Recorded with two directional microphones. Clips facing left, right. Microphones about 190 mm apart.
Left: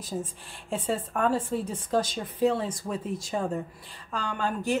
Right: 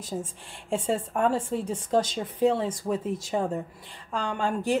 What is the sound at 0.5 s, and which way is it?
Speech, 25° right (ahead or behind).